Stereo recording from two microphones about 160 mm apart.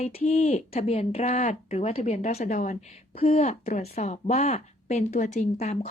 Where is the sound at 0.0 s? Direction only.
40° left (ahead or behind).